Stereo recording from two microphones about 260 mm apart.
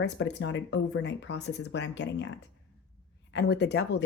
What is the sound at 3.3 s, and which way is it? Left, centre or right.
Speech, left.